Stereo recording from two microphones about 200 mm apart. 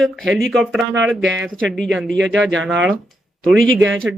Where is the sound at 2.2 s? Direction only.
65° right (ahead or behind).